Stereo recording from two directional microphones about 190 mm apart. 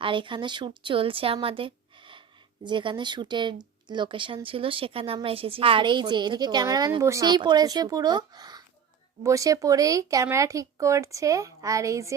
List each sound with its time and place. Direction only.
0.0 s a woman's voice: 25° right (ahead or behind)